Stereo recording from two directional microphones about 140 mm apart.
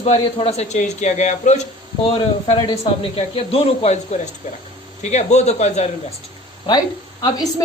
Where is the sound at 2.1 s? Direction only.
35° left (ahead or behind).